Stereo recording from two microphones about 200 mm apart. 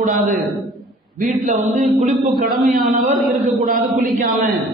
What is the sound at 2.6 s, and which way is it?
Speech, 45° right (ahead or behind).